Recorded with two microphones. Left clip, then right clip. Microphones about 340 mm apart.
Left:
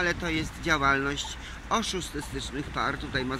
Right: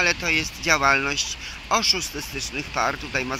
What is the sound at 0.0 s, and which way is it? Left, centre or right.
Speech, centre.